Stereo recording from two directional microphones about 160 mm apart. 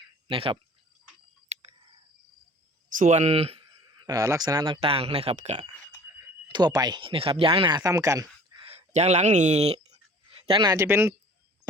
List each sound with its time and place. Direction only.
0.3 s speech: 35° right (ahead or behind)
1.5 s a sound: 45° right (ahead or behind)
3.0 s speech: 45° right (ahead or behind)
6.5 s speech: 25° right (ahead or behind)
8.6 s speech: 40° right (ahead or behind)
9.9 s a sound: 30° right (ahead or behind)
10.8 s speech: 15° right (ahead or behind)